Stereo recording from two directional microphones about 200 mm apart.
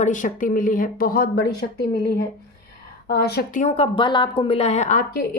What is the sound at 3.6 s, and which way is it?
Speech, 30° left (ahead or behind).